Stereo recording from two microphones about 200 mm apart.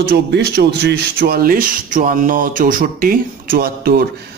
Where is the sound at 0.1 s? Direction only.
55° right (ahead or behind).